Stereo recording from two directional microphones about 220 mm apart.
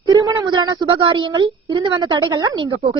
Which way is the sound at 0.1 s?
15° right (ahead or behind).